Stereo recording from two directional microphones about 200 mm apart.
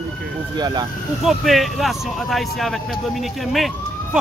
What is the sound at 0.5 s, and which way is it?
Speech, 20° right (ahead or behind).